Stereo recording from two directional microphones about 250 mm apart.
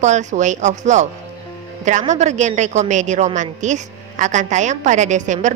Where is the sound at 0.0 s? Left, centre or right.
Right.